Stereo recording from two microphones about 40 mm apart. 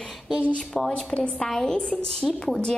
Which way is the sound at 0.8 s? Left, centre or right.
Left.